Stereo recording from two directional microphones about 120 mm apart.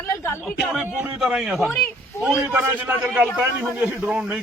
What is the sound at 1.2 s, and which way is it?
Speech, 5° right (ahead or behind).